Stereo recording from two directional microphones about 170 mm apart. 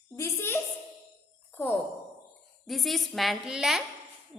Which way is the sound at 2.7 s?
Centre (ahead or behind).